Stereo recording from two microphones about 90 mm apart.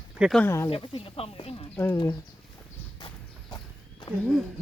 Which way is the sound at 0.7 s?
90° left.